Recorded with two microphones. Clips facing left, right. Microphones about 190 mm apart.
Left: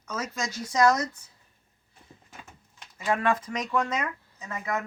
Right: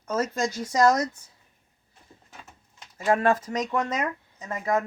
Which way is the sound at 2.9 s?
45° right (ahead or behind).